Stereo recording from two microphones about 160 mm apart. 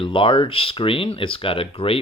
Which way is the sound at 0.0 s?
30° left (ahead or behind).